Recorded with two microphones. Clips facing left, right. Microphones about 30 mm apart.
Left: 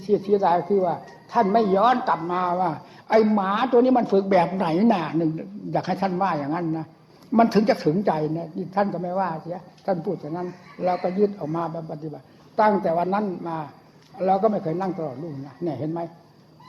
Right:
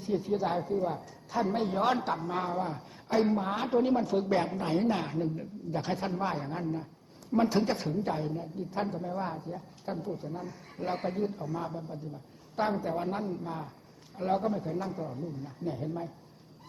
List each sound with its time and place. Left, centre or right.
0.3 s a man's voice: left
3.1 s a woman's voice: left
3.7 s a man's voice: left
4.4 s a man's voice: left
5.1 s a man's voice: left
11.3 s a man's voice: left
12.6 s a man's voice: left; by 14.4 s centre
14.4 s a man's voice: left